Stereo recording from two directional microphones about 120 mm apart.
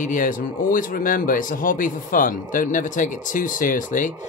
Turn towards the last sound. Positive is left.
turn(degrees=90)